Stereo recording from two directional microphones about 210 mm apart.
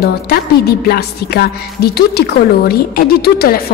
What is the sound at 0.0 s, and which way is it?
A woman's voice, 50° left (ahead or behind).